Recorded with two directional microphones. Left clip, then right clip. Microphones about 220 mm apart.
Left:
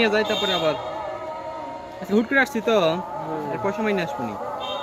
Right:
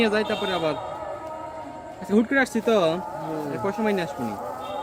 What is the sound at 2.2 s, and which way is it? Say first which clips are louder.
Speech: left 2 dB; 15° right (ahead or behind).